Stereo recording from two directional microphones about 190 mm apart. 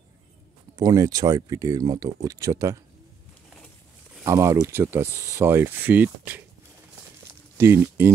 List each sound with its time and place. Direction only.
0.7 s speech: 20° right (ahead or behind)
3.5 s a sound: 5° left (ahead or behind)
4.2 s speech: 15° right (ahead or behind)
7.5 s speech: 10° right (ahead or behind)